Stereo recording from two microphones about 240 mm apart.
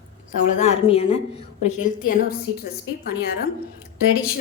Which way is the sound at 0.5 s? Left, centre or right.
Left.